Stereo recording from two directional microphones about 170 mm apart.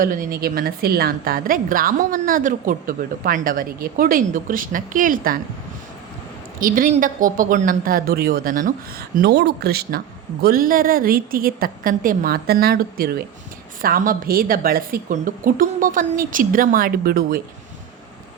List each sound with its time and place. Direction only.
0.0 s a woman's voice: 50° right (ahead or behind)
6.6 s a woman's voice: 55° right (ahead or behind)